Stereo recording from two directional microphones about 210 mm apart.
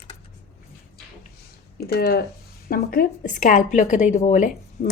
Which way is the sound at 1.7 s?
45° left (ahead or behind).